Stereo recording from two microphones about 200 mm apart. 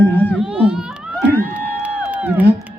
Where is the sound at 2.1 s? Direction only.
10° right (ahead or behind).